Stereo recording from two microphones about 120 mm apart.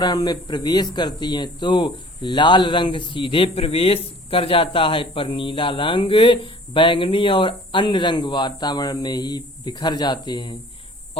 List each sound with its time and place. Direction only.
0.0 s speech: 35° left (ahead or behind)